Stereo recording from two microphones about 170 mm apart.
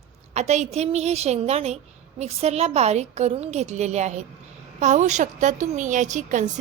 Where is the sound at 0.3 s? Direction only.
40° right (ahead or behind).